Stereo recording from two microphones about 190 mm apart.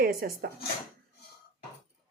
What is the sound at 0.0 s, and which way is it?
Speech, 50° right (ahead or behind).